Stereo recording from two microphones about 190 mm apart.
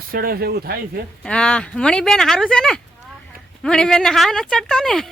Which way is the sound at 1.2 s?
5° left (ahead or behind).